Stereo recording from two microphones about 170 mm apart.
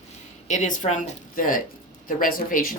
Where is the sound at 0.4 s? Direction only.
45° left (ahead or behind).